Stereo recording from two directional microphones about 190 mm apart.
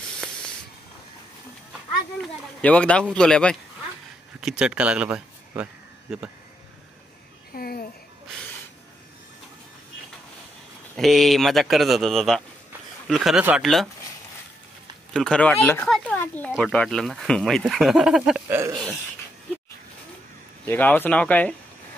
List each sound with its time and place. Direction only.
2.2 s speech: 5° left (ahead or behind)
7.5 s a sound: 50° left (ahead or behind)
11.0 s speech: centre (ahead or behind)
15.1 s speech: 5° left (ahead or behind)
20.6 s speech: 10° left (ahead or behind)